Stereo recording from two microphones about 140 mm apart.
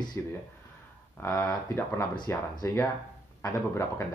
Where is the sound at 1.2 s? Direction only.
25° left (ahead or behind).